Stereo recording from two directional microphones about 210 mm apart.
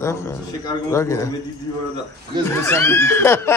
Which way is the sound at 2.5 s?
10° left (ahead or behind).